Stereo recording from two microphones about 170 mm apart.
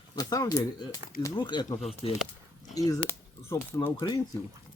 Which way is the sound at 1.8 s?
35° left (ahead or behind).